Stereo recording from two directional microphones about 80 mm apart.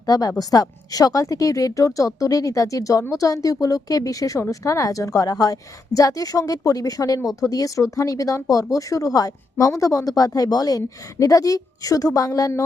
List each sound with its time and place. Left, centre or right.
0.0 s a woman's voice: left